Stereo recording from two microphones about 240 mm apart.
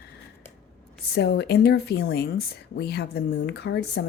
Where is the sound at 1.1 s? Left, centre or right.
Left.